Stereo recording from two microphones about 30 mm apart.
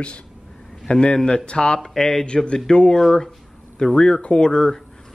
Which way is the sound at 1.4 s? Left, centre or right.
Left.